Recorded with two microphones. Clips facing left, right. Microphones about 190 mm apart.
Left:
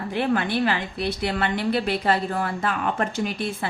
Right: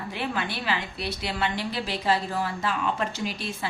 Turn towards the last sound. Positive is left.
turn(degrees=55)  # may be behind; listen again after turning